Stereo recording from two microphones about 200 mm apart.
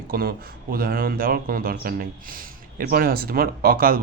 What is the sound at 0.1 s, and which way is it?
Speech, 50° right (ahead or behind).